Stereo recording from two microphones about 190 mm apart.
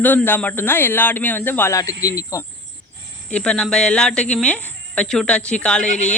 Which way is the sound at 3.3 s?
5° left (ahead or behind).